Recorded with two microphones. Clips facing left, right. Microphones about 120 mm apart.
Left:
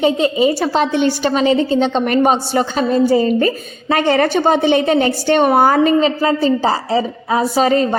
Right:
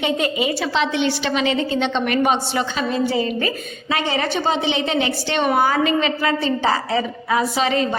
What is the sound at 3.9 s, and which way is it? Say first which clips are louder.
A woman's voice: left 8 dB; 55° left (ahead or behind).